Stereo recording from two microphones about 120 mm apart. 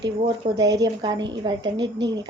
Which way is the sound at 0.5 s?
30° right (ahead or behind).